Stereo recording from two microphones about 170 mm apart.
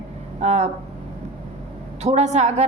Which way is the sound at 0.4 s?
40° right (ahead or behind).